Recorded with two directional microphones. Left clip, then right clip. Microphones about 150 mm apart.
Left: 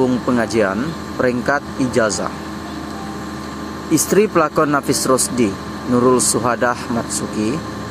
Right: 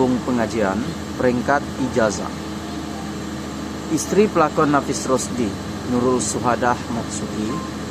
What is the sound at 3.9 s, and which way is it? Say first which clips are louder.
Speech: left 3 dB; 35° left (ahead or behind).